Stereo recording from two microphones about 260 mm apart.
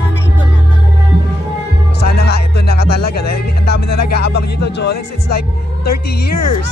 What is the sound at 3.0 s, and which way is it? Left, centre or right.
Music, left.